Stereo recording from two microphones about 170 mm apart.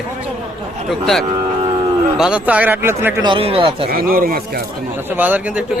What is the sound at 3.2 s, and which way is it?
Speech, 30° right (ahead or behind).